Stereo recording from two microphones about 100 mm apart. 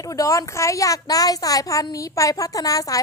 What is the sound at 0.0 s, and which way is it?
A woman's voice, 35° left (ahead or behind).